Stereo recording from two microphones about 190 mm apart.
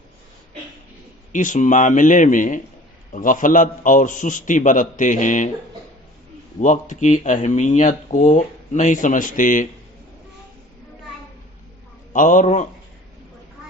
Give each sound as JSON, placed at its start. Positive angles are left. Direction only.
{"t": 1.3, "sound": "a man's voice", "side_deg": 40}
{"t": 6.6, "sound": "speech", "side_deg": 40}
{"t": 12.1, "sound": "a man's voice", "side_deg": 40}